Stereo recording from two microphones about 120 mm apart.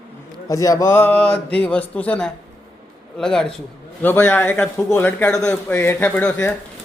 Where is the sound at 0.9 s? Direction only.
15° left (ahead or behind).